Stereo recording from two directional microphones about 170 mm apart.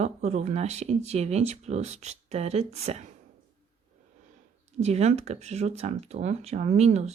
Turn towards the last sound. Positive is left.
turn(degrees=-40)  # may be behind; listen again after turning